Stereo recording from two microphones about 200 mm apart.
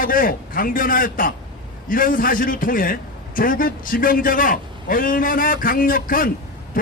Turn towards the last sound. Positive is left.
turn(degrees=45)  # may be behind; listen again after turning